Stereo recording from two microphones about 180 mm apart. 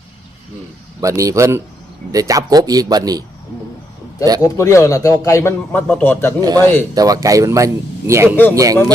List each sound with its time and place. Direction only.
1.0 s speech: 20° right (ahead or behind)
4.4 s a man's voice: 15° left (ahead or behind)
6.4 s speech: 20° right (ahead or behind)